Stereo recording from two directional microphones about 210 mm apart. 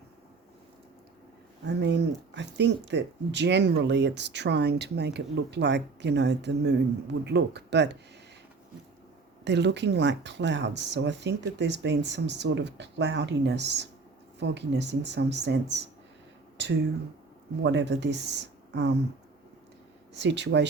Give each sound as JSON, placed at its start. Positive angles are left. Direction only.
{"t": 1.6, "sound": "speech", "side_deg": -55}
{"t": 9.4, "sound": "speech", "side_deg": -55}
{"t": 20.1, "sound": "speech", "side_deg": -55}